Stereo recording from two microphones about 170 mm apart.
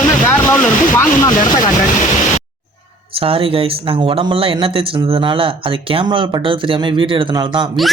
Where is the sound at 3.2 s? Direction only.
35° right (ahead or behind).